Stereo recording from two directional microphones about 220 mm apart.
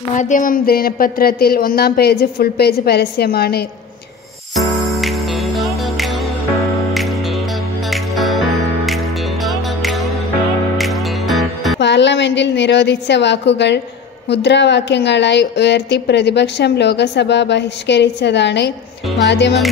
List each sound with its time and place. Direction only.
0.1 s a woman's voice: 35° left (ahead or behind)
4.6 s music: centre (ahead or behind)
11.8 s a woman's voice: 55° left (ahead or behind)